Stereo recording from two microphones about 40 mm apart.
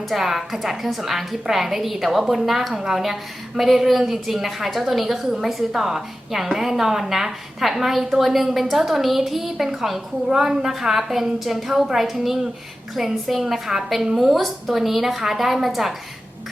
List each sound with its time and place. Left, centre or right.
0.1 s a woman's voice: centre